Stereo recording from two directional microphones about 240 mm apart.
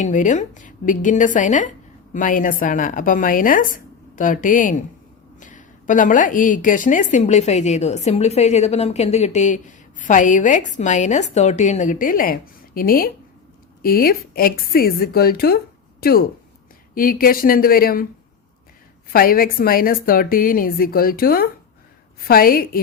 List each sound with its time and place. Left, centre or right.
0.0 s a woman's voice: left
19.1 s a woman's voice: left